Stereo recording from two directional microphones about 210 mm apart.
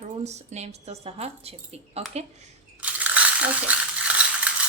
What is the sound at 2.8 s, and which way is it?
Mechanisms, 5° right (ahead or behind).